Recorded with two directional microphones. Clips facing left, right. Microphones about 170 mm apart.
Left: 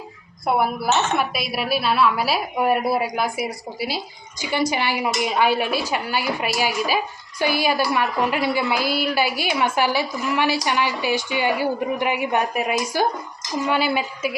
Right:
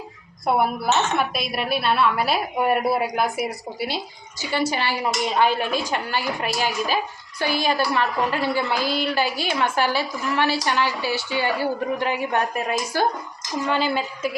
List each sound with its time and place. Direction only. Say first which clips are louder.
0.4 s a woman's voice: even; 5° left (ahead or behind)
4.4 s a woman's voice: left 1 dB; 15° left (ahead or behind)